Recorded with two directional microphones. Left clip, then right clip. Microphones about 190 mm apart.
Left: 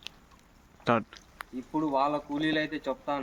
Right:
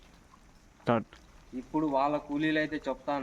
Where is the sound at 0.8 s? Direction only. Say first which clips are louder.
Left 2 dB; centre (ahead or behind).